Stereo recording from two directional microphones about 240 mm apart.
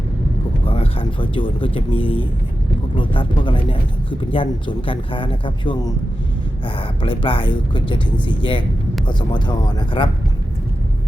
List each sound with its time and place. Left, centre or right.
0.6 s speech: left